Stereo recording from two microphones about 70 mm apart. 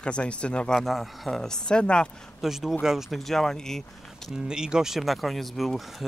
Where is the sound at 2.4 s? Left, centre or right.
Centre.